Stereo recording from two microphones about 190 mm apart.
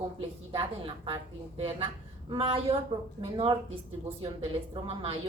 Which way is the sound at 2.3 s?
30° right (ahead or behind).